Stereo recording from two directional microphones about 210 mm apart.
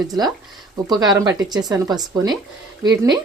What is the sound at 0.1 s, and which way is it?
A woman's voice, 20° right (ahead or behind).